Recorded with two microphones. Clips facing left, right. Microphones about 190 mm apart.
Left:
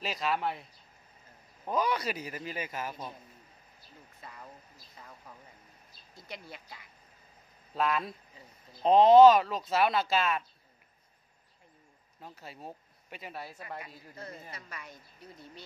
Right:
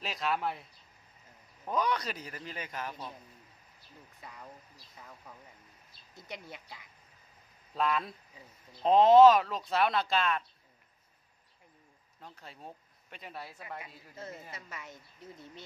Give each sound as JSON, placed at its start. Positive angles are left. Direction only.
{"t": 0.0, "sound": "speech", "side_deg": 0}
{"t": 1.7, "sound": "a man's voice", "side_deg": 5}
{"t": 4.2, "sound": "speech", "side_deg": -15}
{"t": 6.1, "sound": "speech", "side_deg": -20}
{"t": 7.7, "sound": "speech", "side_deg": 5}
{"t": 12.2, "sound": "speech", "side_deg": 5}
{"t": 13.7, "sound": "speech", "side_deg": -20}